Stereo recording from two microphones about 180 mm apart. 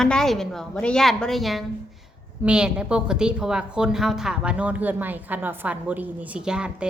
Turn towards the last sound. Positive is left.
turn(degrees=-5)  # may be behind; listen again after turning